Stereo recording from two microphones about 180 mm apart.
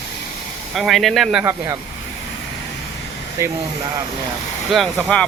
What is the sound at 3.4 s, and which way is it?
Speech, 15° right (ahead or behind).